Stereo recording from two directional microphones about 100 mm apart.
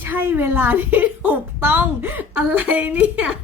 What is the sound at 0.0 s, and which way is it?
A woman's voice, 20° right (ahead or behind).